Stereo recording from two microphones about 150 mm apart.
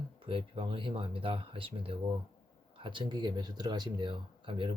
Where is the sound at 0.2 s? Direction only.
35° right (ahead or behind).